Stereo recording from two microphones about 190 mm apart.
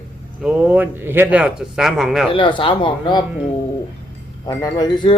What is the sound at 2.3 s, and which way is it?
Speech, 25° left (ahead or behind).